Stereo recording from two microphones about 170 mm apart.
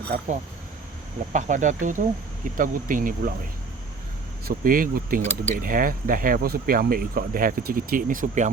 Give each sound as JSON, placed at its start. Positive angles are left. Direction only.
{"t": 0.1, "sound": "speech", "side_deg": -55}
{"t": 1.3, "sound": "speech", "side_deg": -45}
{"t": 4.4, "sound": "speech", "side_deg": -55}